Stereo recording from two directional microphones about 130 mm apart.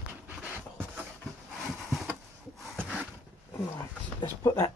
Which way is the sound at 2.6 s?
5° left (ahead or behind).